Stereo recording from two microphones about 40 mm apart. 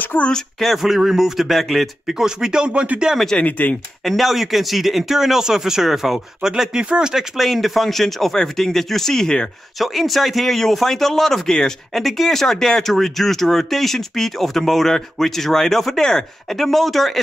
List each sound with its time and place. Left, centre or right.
0.1 s speech: left
0.6 s speech: centre
0.9 s speech: centre
2.1 s speech: centre
3.3 s speech: left
4.0 s speech: centre
7.3 s speech: centre
9.8 s speech: centre